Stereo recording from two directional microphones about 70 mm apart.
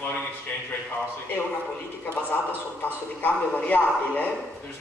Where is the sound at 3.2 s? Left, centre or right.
Left.